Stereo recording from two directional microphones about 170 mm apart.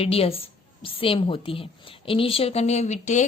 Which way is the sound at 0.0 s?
35° left (ahead or behind).